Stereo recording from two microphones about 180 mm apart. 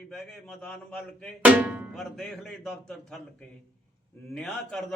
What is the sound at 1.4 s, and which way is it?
Music, 10° right (ahead or behind).